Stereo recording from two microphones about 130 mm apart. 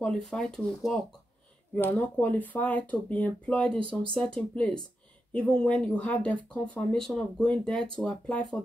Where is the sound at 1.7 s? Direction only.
15° left (ahead or behind).